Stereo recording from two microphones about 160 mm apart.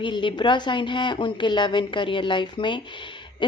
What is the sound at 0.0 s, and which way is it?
A woman's voice, 30° left (ahead or behind).